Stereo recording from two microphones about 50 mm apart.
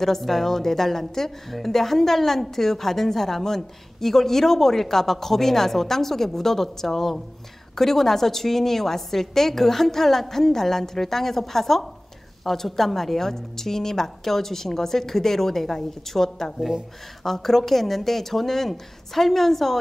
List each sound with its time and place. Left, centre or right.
0.0 s a woman's voice: centre